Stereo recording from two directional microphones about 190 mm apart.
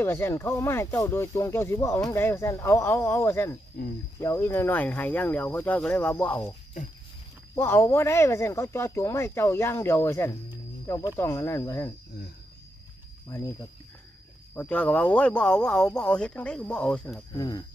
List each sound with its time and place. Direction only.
0.0 s speech: 15° left (ahead or behind)
3.8 s speech: 50° left (ahead or behind)
4.2 s speech: 15° left (ahead or behind)
7.5 s speech: 15° left (ahead or behind)
13.3 s speech: 15° left (ahead or behind)
17.3 s speech: 20° left (ahead or behind)